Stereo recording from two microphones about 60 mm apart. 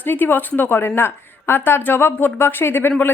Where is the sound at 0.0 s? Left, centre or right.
Left.